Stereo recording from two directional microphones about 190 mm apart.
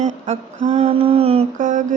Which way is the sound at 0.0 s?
40° right (ahead or behind).